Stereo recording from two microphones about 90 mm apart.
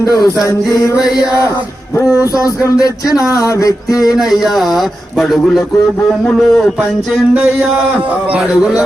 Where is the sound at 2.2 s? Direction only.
40° left (ahead or behind).